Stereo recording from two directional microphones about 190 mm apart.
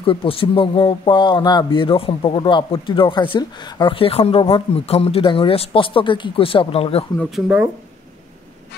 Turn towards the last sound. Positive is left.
turn(degrees=0)  # may be behind; listen again after turning